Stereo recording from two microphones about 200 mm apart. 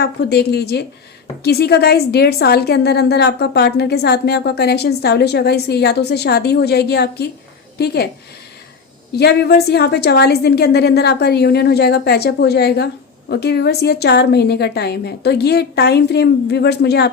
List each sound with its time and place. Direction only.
0.0 s a woman's voice: 55° left (ahead or behind)
9.1 s a woman's voice: 55° left (ahead or behind)